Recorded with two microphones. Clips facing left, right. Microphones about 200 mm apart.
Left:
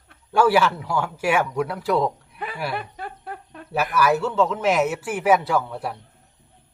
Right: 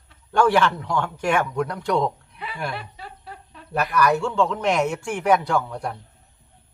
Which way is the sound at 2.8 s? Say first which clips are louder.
Left 5 dB; 50° left (ahead or behind).